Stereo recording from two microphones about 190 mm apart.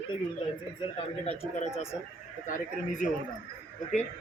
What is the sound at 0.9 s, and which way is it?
Speech, 30° left (ahead or behind).